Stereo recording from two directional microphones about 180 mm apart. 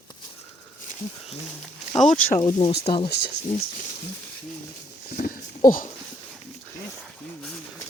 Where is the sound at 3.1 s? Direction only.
65° left (ahead or behind).